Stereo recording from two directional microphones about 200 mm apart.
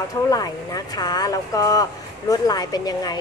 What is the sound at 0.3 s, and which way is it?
Speech, 20° left (ahead or behind).